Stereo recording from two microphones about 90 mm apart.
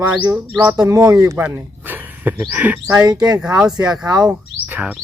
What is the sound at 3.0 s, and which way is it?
Speech, 45° right (ahead or behind).